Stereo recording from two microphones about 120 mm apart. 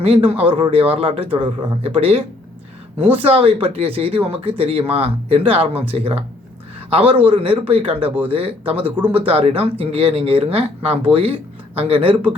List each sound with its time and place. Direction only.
0.0 s speech: 55° right (ahead or behind)
7.3 s speech: 50° right (ahead or behind)
9.0 s speech: 15° right (ahead or behind)
9.2 s speech: 55° right (ahead or behind)